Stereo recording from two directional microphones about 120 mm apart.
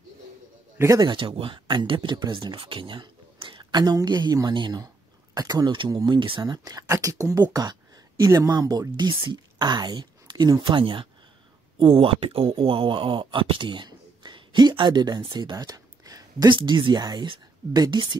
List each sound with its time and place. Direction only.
0.9 s speech: 40° right (ahead or behind)
15.5 s speech: 30° right (ahead or behind)